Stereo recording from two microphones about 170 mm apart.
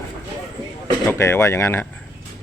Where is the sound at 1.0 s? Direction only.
15° left (ahead or behind).